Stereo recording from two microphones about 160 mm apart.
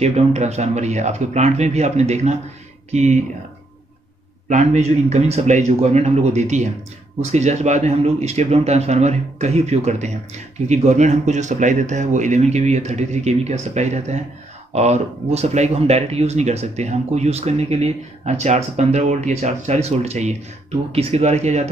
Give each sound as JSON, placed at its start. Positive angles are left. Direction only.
{"t": 0.0, "sound": "speech", "side_deg": -45}
{"t": 4.5, "sound": "speech", "side_deg": -45}